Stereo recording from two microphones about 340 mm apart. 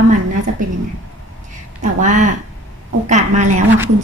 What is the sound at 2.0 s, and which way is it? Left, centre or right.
A woman's voice, right.